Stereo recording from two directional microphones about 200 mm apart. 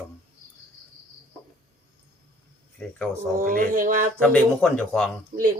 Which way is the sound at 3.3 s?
45° right (ahead or behind).